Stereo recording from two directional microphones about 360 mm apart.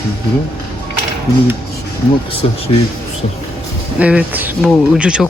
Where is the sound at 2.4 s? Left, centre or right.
Centre.